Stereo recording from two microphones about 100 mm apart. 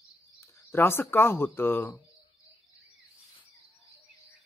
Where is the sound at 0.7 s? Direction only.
25° left (ahead or behind).